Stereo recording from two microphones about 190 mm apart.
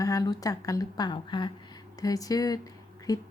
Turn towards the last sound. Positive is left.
turn(degrees=20)  # may be behind; listen again after turning